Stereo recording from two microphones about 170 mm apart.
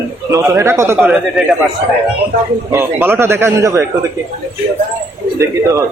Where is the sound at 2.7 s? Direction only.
15° right (ahead or behind).